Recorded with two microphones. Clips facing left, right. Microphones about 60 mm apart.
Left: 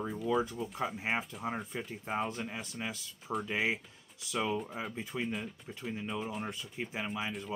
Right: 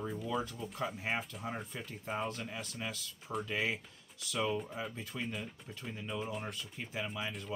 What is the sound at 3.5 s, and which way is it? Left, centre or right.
Speech, left.